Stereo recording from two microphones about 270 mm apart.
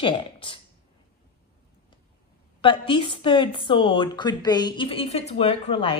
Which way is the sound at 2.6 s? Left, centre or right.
Centre.